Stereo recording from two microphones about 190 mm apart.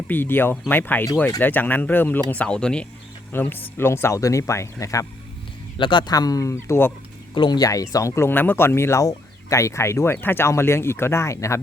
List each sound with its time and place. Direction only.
0.1 s speech: 10° left (ahead or behind)
7.3 s speech: 25° left (ahead or behind)